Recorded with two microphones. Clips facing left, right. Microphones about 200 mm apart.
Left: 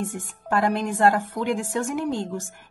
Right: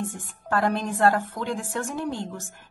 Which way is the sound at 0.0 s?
15° left (ahead or behind).